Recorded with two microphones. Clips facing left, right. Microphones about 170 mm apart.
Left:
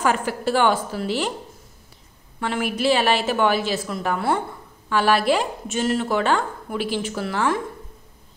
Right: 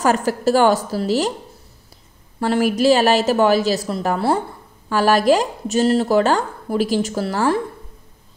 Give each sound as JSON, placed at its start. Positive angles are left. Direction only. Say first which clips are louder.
{"t": 0.0, "sound": "speech", "louder": "right 5 dB", "side_deg": -40}
{"t": 2.4, "sound": "speech", "louder": "right 6 dB", "side_deg": -40}